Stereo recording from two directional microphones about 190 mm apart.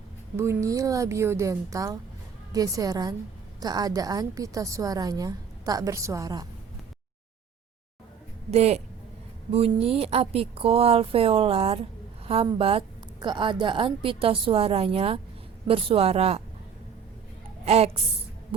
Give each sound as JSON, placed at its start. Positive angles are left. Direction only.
{"t": 0.3, "sound": "speech", "side_deg": -15}
{"t": 8.4, "sound": "speech", "side_deg": -35}
{"t": 17.7, "sound": "speech", "side_deg": -30}